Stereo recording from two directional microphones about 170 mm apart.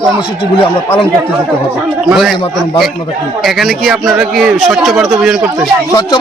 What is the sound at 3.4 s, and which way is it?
A man's voice, centre (ahead or behind).